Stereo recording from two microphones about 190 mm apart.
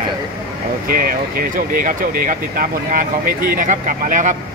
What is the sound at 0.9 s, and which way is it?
Speech, 50° right (ahead or behind).